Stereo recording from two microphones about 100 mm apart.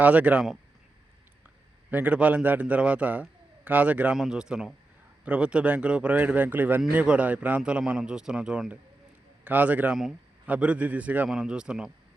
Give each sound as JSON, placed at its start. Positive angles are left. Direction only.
{"t": 0.0, "sound": "a man's voice", "side_deg": -15}
{"t": 1.9, "sound": "a man's voice", "side_deg": -15}